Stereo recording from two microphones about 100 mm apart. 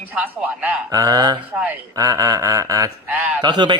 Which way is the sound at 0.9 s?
35° right (ahead or behind).